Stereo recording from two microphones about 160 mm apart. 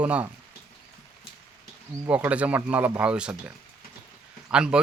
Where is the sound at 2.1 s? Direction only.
10° right (ahead or behind).